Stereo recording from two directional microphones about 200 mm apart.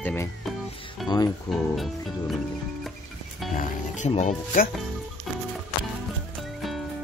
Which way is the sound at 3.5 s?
35° left (ahead or behind).